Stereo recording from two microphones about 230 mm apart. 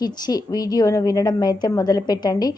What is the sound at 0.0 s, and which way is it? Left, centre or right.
A woman's voice, centre.